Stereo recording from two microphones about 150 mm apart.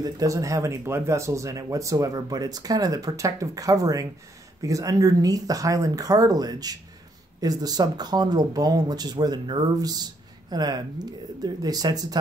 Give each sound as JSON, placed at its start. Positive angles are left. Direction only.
{"t": 0.0, "sound": "speech", "side_deg": -25}